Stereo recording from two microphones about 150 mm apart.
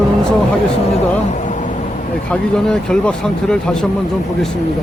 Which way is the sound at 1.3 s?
55° left (ahead or behind).